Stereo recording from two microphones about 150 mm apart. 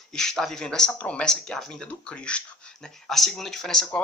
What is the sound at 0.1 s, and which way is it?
Speech, 5° left (ahead or behind).